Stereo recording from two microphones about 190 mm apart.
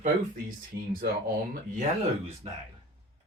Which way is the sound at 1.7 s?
40° right (ahead or behind).